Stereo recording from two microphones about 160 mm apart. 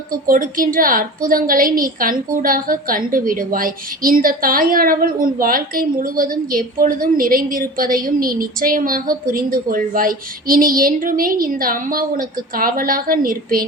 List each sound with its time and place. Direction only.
0.1 s a woman's voice: 60° right (ahead or behind)